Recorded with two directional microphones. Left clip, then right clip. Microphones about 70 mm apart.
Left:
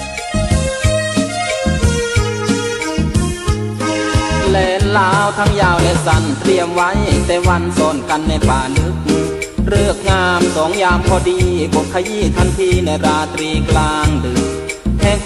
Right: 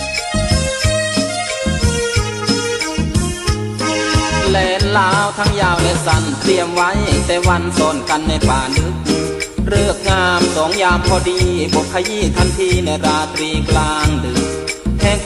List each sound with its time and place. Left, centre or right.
2.4 s music: right
3.8 s music: right